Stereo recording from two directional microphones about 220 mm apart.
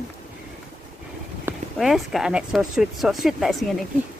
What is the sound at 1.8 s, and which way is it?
Speech, centre (ahead or behind).